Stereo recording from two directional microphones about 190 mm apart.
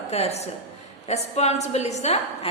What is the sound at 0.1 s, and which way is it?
A woman's voice, 35° left (ahead or behind).